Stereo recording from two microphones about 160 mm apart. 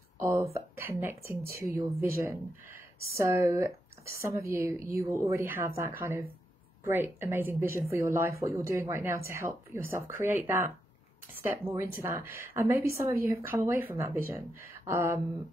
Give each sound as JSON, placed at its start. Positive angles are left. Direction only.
{"t": 0.2, "sound": "speech", "side_deg": -20}